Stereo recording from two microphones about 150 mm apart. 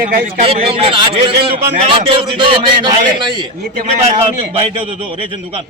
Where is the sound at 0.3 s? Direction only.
40° right (ahead or behind).